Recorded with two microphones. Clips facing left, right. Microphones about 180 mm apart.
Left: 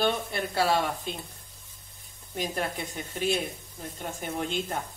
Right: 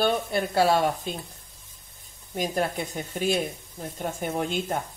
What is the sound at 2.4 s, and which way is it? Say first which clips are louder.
Speech: right 4 dB; 40° right (ahead or behind).